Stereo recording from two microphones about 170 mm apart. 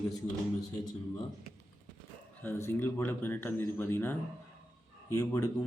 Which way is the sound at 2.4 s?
15° left (ahead or behind).